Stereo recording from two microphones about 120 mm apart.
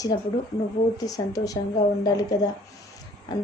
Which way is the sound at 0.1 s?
45° left (ahead or behind).